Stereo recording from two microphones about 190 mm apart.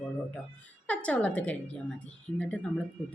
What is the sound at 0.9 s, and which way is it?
A woman's voice, 5° left (ahead or behind).